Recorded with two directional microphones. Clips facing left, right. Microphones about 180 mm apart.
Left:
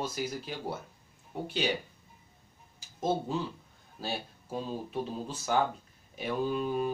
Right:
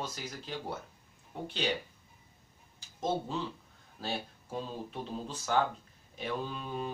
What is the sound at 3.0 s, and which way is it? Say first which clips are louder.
Speech: left 3 dB; 10° left (ahead or behind).